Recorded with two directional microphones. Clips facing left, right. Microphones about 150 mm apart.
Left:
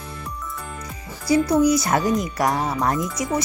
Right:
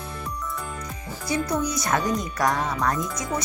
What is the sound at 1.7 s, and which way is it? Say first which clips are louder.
Speech: left 5 dB; 30° left (ahead or behind).